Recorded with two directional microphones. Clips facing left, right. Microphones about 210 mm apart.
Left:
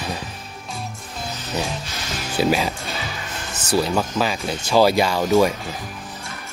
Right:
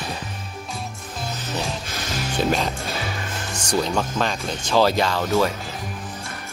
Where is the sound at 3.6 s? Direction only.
5° left (ahead or behind).